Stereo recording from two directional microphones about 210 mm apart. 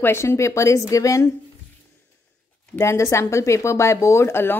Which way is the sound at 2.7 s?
10° left (ahead or behind).